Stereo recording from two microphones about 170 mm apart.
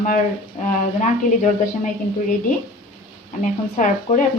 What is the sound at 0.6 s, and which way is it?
Speech, 45° left (ahead or behind).